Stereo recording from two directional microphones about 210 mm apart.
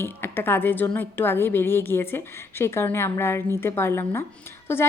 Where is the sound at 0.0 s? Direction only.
10° left (ahead or behind).